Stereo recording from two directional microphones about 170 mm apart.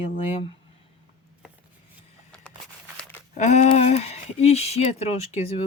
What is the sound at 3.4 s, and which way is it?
Speech, 45° left (ahead or behind).